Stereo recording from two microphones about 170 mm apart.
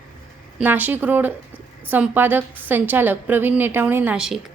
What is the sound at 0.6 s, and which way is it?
A woman's voice, 10° right (ahead or behind).